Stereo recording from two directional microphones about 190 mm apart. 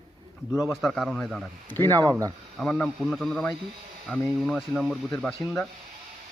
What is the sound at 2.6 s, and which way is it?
Speech, 5° left (ahead or behind).